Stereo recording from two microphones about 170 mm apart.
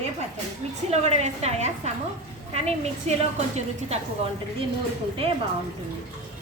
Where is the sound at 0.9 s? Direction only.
40° right (ahead or behind).